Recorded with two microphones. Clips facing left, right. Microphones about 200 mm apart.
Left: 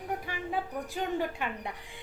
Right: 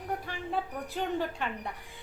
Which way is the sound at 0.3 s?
10° left (ahead or behind).